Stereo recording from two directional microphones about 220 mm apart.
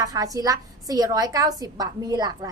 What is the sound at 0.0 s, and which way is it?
A woman's voice, 15° right (ahead or behind).